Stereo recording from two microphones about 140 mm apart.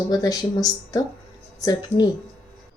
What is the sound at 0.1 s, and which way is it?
Speech, 25° left (ahead or behind).